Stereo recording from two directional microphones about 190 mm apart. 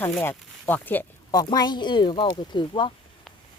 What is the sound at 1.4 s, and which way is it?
A woman's voice, 20° left (ahead or behind).